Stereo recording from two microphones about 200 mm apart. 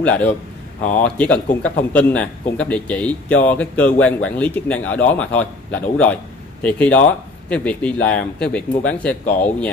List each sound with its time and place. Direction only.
0.0 s a man's voice: 5° left (ahead or behind)